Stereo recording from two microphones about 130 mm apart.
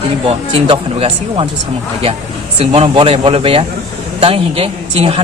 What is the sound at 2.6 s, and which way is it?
A woman's voice, 45° right (ahead or behind).